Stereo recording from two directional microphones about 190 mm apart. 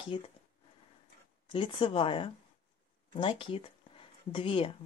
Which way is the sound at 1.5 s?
25° left (ahead or behind).